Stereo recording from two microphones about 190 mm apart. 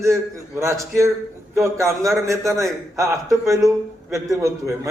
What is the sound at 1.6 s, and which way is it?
A man's voice, 15° right (ahead or behind).